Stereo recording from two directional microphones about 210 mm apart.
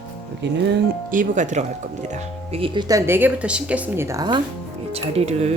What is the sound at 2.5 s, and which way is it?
Speech, 25° right (ahead or behind).